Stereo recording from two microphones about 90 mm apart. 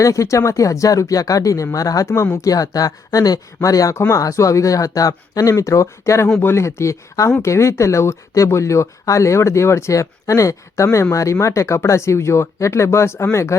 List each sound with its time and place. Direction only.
0.0 s speech: 35° left (ahead or behind)